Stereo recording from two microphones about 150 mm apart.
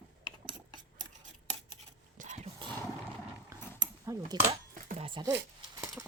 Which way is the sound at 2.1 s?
50° right (ahead or behind).